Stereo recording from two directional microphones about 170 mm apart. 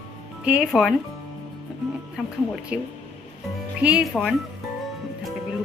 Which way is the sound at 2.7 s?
5° right (ahead or behind).